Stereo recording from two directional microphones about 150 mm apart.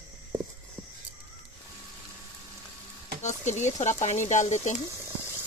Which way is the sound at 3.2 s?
50° left (ahead or behind).